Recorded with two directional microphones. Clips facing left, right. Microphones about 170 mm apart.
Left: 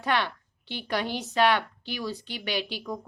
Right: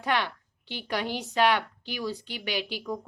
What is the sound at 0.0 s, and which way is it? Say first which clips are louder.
A woman's voice: left 1 dB; 10° right (ahead or behind).